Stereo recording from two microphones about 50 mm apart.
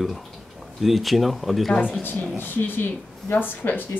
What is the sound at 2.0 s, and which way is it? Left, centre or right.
Speech, left.